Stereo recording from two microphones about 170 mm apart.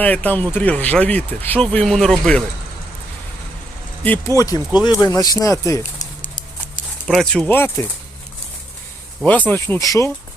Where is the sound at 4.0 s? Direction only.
15° left (ahead or behind).